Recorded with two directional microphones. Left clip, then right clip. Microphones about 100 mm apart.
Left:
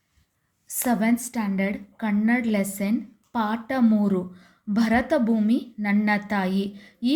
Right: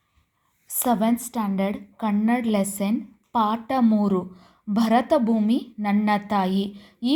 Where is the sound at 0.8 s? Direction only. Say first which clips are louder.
Right 2 dB; 10° right (ahead or behind).